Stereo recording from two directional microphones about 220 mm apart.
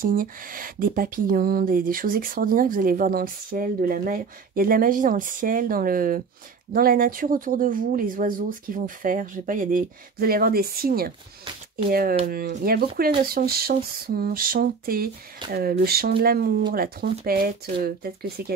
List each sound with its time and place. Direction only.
0.0 s speech: 40° right (ahead or behind)